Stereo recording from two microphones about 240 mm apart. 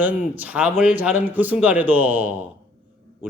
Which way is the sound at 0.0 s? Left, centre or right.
Centre.